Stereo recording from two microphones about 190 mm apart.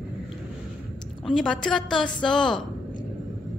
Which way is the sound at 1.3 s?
5° left (ahead or behind).